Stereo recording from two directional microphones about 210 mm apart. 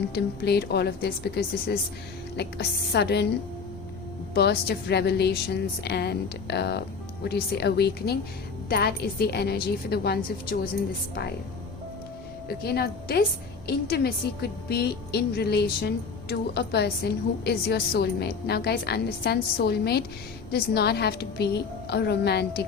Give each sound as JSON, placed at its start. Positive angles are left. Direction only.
{"t": 0.1, "sound": "a woman's voice", "side_deg": 50}
{"t": 4.4, "sound": "a woman's voice", "side_deg": 50}
{"t": 12.5, "sound": "a woman's voice", "side_deg": 50}